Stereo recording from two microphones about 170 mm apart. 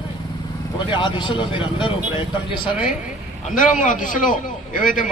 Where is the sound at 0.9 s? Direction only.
25° left (ahead or behind).